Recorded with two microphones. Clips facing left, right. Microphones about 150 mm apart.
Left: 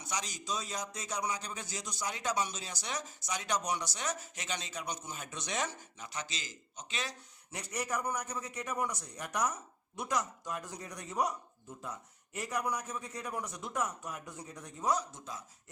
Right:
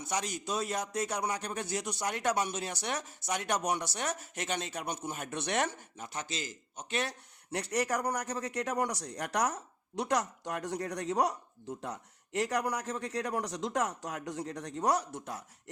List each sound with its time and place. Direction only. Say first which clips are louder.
0.0 s a man's voice: right 5 dB; 55° right (ahead or behind)